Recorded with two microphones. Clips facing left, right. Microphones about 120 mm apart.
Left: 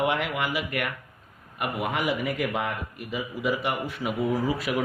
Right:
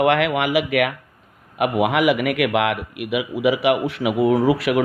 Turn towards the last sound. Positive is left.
turn(degrees=-70)  # may be behind; listen again after turning